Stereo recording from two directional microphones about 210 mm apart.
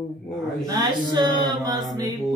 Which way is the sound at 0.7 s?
20° right (ahead or behind).